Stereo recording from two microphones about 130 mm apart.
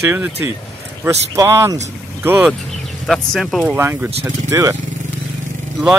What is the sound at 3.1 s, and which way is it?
Speech, 5° left (ahead or behind).